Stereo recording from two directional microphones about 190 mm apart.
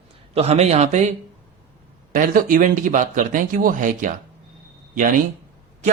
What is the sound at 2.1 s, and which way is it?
Speech, 45° right (ahead or behind).